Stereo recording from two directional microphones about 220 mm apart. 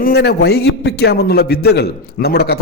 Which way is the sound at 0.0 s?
45° left (ahead or behind).